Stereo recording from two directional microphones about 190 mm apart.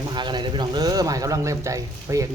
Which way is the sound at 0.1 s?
25° right (ahead or behind).